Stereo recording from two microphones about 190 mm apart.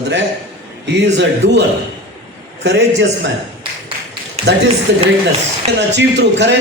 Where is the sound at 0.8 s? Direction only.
65° right (ahead or behind).